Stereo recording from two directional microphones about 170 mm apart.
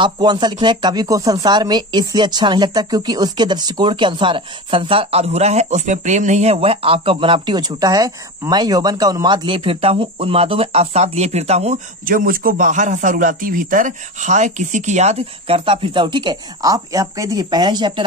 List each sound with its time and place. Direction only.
0.0 s speech: 25° right (ahead or behind)
12.1 s speech: 60° right (ahead or behind); by 18.0 s 25° right (ahead or behind)